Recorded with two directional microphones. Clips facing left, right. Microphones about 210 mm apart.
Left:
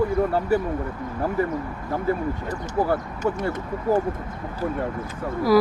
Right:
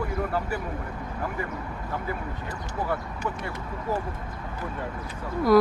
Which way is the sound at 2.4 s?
40° left (ahead or behind).